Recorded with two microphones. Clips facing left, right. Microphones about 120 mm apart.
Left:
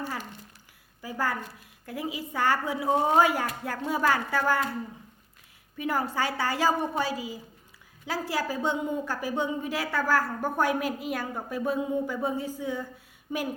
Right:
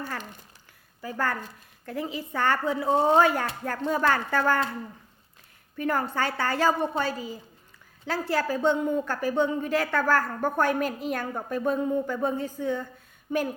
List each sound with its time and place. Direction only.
1.0 s a woman's voice: 10° left (ahead or behind)
2.9 s speech: 30° right (ahead or behind)
3.2 s a woman's voice: 10° left (ahead or behind)
5.7 s a woman's voice: 10° left (ahead or behind)